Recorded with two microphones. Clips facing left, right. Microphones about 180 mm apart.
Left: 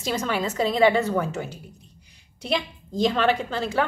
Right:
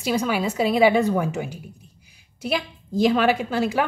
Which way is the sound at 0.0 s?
10° right (ahead or behind).